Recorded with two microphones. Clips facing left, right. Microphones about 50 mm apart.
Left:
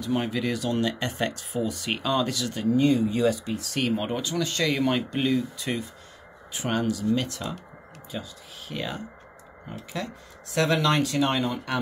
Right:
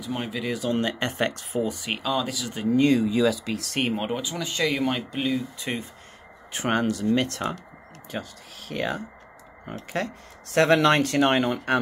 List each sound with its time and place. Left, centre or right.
0.0 s speech: centre
0.6 s speech: right
1.9 s speech: centre
2.7 s speech: right
3.7 s speech: right
4.1 s speech: centre
5.6 s speech: right
6.5 s speech: right
8.1 s speech: right